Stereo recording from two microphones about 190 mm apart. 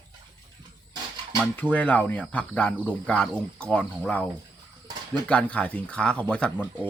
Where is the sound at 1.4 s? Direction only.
5° left (ahead or behind).